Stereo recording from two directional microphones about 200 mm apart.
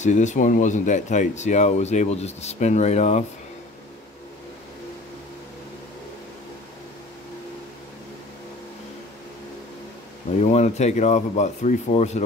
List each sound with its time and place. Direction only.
0.0 s speech: 35° left (ahead or behind)
10.4 s speech: 35° left (ahead or behind)